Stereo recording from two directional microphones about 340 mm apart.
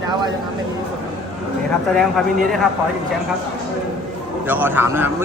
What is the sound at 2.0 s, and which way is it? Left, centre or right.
Speech, centre.